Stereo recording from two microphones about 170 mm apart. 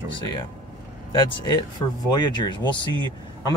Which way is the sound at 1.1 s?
25° left (ahead or behind).